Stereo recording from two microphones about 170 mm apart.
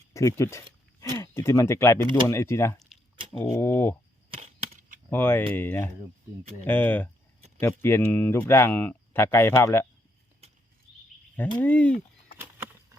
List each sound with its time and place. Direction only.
0.1 s speech: 15° left (ahead or behind)
5.1 s speech: 10° left (ahead or behind)
11.3 s speech: 10° left (ahead or behind)